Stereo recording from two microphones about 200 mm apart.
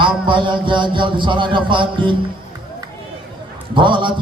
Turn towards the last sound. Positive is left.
turn(degrees=-25)  # may be behind; listen again after turning